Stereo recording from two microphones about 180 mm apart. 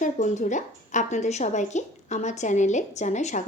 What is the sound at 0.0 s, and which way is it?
A woman's voice, 45° left (ahead or behind).